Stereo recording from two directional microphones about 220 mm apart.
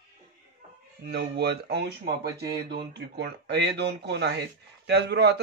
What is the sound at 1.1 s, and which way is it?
A man's voice, 50° right (ahead or behind).